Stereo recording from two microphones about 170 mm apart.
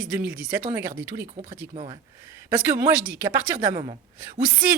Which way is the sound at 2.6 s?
10° right (ahead or behind).